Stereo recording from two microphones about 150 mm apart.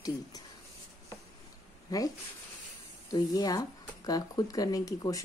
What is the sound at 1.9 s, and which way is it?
Speech, 25° left (ahead or behind).